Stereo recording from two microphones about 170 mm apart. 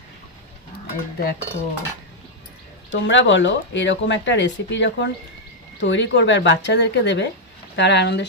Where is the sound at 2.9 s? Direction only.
90° left.